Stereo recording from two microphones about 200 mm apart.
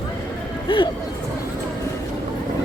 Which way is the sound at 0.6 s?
25° left (ahead or behind).